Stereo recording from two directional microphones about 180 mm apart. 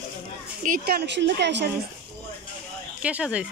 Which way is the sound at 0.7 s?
55° right (ahead or behind).